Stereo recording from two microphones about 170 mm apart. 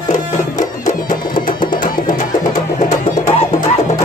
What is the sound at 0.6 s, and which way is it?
Music, 50° left (ahead or behind).